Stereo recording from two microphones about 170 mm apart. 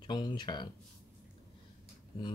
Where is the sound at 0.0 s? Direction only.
25° left (ahead or behind).